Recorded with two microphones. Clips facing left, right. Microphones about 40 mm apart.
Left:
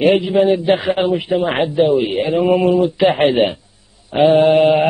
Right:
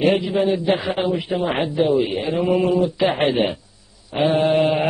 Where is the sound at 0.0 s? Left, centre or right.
Left.